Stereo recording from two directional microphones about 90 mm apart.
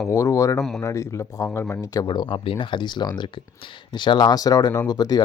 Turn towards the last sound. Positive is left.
turn(degrees=45)  # may be behind; listen again after turning